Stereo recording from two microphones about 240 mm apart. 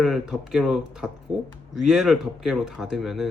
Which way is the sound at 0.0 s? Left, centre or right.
Centre.